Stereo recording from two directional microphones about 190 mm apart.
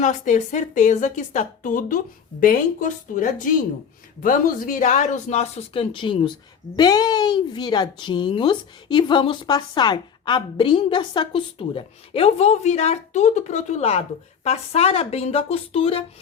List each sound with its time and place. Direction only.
0.0 s a woman's voice: 40° left (ahead or behind)